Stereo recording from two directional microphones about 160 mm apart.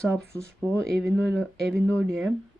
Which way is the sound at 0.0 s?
5° left (ahead or behind).